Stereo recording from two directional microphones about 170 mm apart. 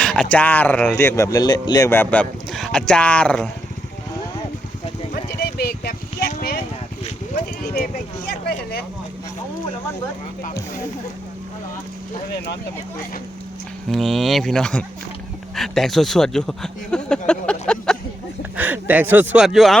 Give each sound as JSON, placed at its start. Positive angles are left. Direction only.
{"t": 0.0, "sound": "speech", "side_deg": 5}
{"t": 5.1, "sound": "clip-clop", "side_deg": 65}
{"t": 7.0, "sound": "a sound", "side_deg": 55}
{"t": 8.3, "sound": "speech", "side_deg": 65}
{"t": 13.9, "sound": "speech", "side_deg": 0}
{"t": 18.5, "sound": "speech", "side_deg": -10}